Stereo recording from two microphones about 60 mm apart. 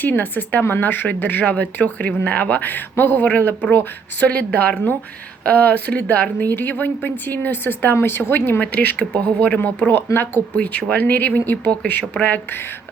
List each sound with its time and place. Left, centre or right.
0.0 s speech: left
9.6 s speech: left